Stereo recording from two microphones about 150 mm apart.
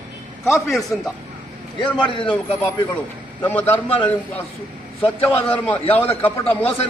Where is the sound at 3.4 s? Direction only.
15° left (ahead or behind).